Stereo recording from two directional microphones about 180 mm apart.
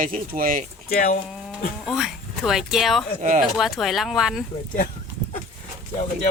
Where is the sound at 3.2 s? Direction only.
45° right (ahead or behind).